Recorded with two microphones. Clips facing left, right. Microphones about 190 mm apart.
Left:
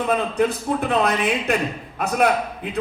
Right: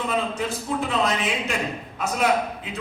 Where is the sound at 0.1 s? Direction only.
60° left (ahead or behind).